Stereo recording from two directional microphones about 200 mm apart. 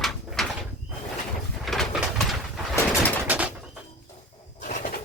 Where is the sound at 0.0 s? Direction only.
Centre (ahead or behind).